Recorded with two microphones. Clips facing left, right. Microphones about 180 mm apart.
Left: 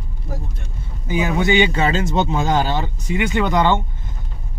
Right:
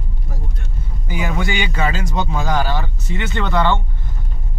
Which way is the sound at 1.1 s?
20° left (ahead or behind).